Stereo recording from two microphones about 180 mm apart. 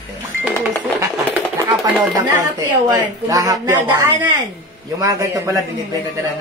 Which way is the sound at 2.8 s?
20° right (ahead or behind).